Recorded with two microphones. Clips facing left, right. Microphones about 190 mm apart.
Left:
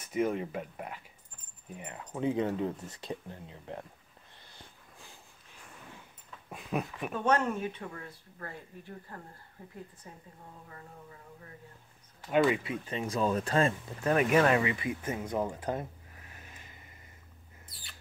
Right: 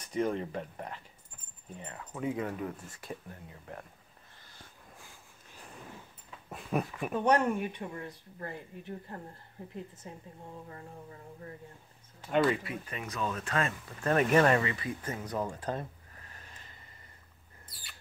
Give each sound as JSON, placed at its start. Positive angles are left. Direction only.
{"t": 0.0, "sound": "speech", "side_deg": 5}
{"t": 6.5, "sound": "speech", "side_deg": 0}
{"t": 7.2, "sound": "speech", "side_deg": -15}
{"t": 10.7, "sound": "speech", "side_deg": -35}
{"t": 12.4, "sound": "speech", "side_deg": 25}
{"t": 13.9, "sound": "speech", "side_deg": 5}
{"t": 15.2, "sound": "a sound", "side_deg": 20}